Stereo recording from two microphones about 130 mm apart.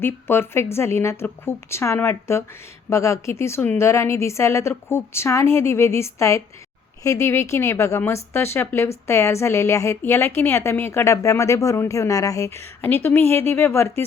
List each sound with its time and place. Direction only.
0.0 s speech: 20° left (ahead or behind)